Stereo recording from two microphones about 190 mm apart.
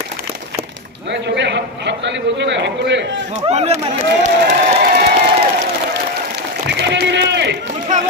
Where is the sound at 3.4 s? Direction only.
35° right (ahead or behind).